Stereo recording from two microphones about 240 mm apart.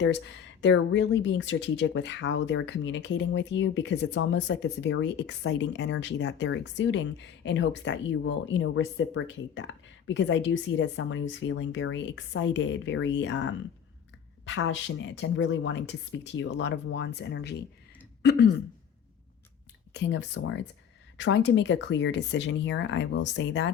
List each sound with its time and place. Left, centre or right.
0.6 s speech: left
18.2 s throat clearing: left
19.9 s speech: left